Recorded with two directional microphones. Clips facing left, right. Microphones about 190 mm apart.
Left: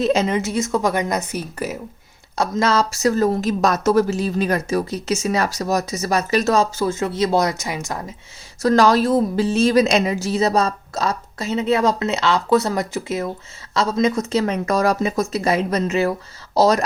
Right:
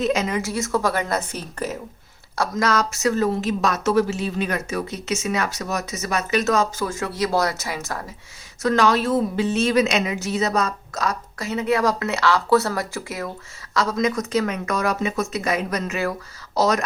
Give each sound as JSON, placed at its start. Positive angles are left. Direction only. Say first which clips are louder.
{"t": 0.0, "sound": "a woman's voice", "louder": "left 4 dB", "side_deg": 30}
{"t": 2.3, "sound": "a woman's voice", "louder": "left 3 dB", "side_deg": 25}
{"t": 8.6, "sound": "a woman's voice", "louder": "left 4 dB", "side_deg": 35}